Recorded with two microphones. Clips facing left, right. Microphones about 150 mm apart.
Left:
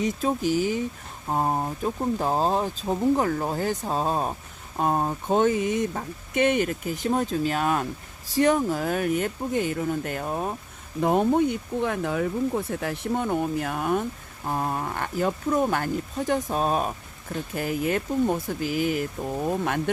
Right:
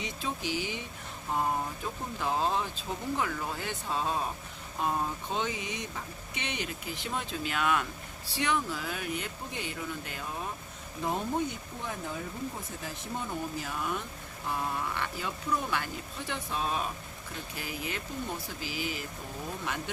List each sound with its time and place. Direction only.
0.0 s speech: 45° left (ahead or behind)
11.0 s speech: 60° left (ahead or behind)